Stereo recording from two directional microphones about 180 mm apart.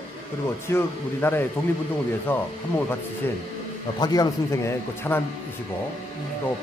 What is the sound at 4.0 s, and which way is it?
Speech, 20° left (ahead or behind).